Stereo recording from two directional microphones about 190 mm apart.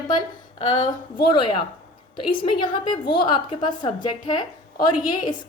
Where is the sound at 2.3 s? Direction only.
25° left (ahead or behind).